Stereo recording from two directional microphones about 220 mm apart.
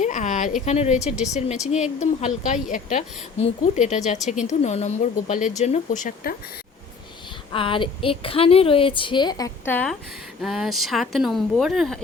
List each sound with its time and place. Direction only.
0.0 s a woman's voice: 35° left (ahead or behind)
7.5 s a woman's voice: 25° left (ahead or behind); by 11.9 s centre (ahead or behind)